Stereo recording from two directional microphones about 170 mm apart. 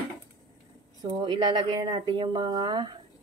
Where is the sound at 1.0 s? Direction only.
25° right (ahead or behind).